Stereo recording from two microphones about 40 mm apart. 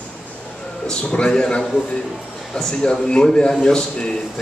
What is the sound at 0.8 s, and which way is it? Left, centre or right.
A man's voice, left.